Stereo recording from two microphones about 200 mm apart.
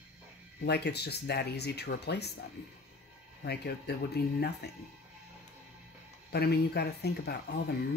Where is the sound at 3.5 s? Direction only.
55° left (ahead or behind).